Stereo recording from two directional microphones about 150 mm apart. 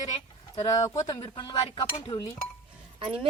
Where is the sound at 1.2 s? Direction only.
35° left (ahead or behind).